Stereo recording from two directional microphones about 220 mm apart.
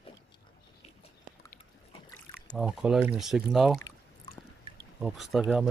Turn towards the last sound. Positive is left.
turn(degrees=-5)  # may be behind; listen again after turning